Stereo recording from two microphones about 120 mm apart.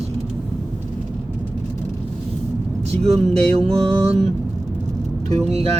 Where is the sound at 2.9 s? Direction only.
60° right (ahead or behind).